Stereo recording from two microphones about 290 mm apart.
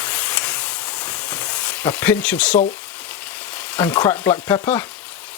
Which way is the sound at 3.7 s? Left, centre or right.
Centre.